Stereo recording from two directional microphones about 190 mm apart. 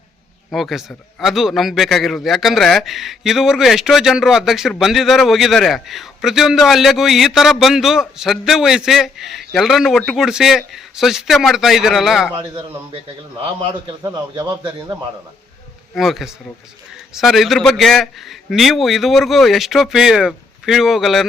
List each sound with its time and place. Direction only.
0.5 s a man's voice: centre (ahead or behind)
12.5 s a man's voice: 30° right (ahead or behind)
14.0 s a man's voice: 20° right (ahead or behind)
16.0 s a man's voice: centre (ahead or behind)